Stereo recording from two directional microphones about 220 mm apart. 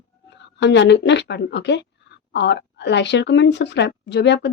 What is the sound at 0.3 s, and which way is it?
Speech, 50° left (ahead or behind).